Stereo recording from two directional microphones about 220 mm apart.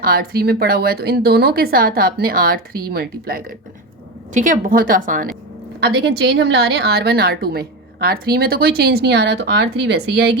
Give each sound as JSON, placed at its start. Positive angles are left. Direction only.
{"t": 0.0, "sound": "a woman's voice", "side_deg": -45}